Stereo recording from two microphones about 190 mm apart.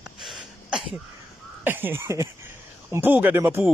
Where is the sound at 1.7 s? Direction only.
10° right (ahead or behind).